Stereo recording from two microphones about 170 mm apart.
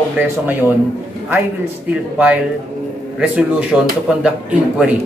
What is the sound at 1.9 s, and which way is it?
Speech, 10° right (ahead or behind).